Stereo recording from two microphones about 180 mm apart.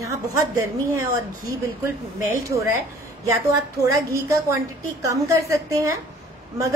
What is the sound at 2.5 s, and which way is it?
Speech, 15° right (ahead or behind).